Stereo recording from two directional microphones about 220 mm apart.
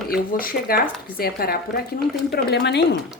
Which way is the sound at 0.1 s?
40° left (ahead or behind).